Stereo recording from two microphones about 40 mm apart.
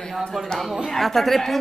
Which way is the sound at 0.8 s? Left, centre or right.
Centre.